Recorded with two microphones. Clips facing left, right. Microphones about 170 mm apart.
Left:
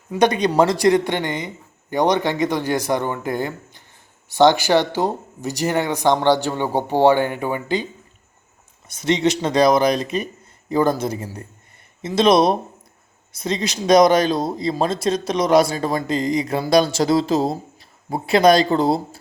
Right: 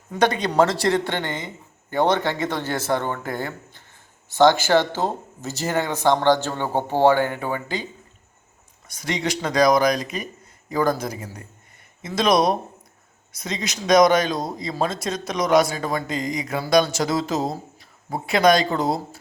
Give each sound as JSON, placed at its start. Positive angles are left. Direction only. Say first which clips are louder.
{"t": 0.2, "sound": "speech", "louder": "left 3 dB", "side_deg": 20}
{"t": 8.9, "sound": "speech", "louder": "left 7 dB", "side_deg": 25}